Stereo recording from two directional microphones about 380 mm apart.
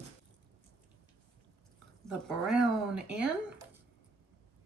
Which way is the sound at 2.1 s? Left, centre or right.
Centre.